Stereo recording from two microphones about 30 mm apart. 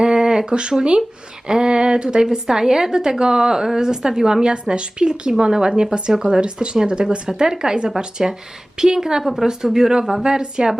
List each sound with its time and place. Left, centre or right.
0.0 s a sound: right
0.5 s a woman's voice: right
4.7 s speech: right
5.4 s a woman's voice: right
6.4 s a woman's voice: right